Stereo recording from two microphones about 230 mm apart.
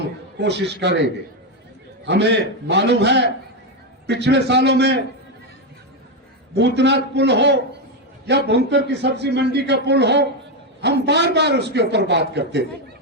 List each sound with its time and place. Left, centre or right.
0.3 s a man's voice: right
2.0 s a man's voice: right
6.5 s a man's voice: right